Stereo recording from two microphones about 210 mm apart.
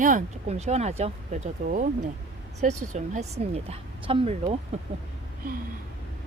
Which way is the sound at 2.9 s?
35° right (ahead or behind).